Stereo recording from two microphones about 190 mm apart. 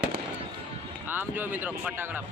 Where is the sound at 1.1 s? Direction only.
10° right (ahead or behind).